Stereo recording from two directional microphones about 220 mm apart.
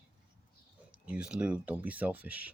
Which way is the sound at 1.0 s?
5° right (ahead or behind).